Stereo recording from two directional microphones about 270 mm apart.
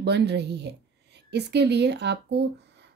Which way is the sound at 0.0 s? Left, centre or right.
Right.